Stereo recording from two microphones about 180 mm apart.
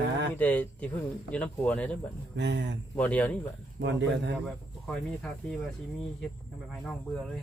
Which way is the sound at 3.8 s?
80° right.